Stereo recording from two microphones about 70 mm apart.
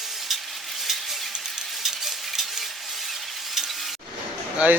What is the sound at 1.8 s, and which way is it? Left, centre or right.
Stir, centre.